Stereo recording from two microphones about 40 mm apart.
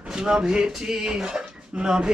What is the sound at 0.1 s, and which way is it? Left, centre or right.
Music, centre.